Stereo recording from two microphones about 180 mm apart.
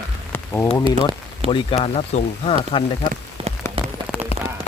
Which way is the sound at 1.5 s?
30° left (ahead or behind).